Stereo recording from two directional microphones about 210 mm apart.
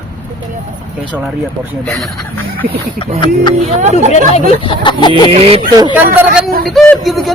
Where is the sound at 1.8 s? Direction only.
5° left (ahead or behind).